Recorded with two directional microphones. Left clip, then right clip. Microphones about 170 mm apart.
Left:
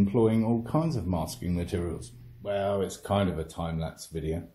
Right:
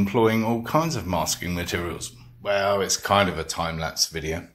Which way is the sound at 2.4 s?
5° left (ahead or behind).